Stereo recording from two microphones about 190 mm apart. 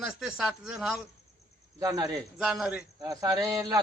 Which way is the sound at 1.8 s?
20° right (ahead or behind).